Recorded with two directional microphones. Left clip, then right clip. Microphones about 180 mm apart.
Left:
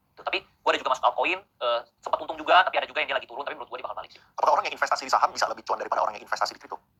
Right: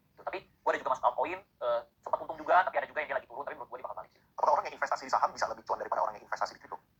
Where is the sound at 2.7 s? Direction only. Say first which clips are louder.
Left 6 dB; 40° left (ahead or behind).